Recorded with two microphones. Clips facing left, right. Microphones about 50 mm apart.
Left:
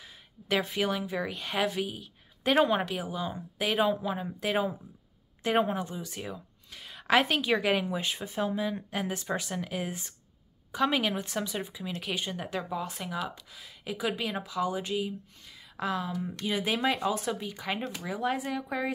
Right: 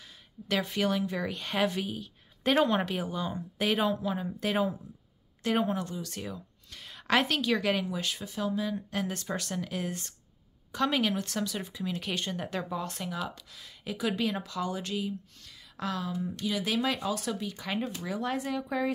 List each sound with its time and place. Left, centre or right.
0.0 s speech: centre
5.6 s a woman's voice: centre
8.9 s speech: centre
11.7 s speech: centre